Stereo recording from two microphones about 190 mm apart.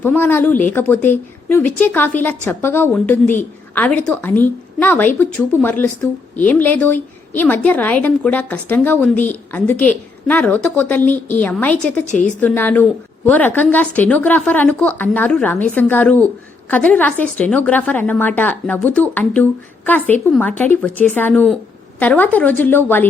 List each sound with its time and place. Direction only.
0.0 s a woman's voice: 10° left (ahead or behind)
12.0 s a woman's voice: 40° left (ahead or behind)
12.4 s a woman's voice: 10° left (ahead or behind)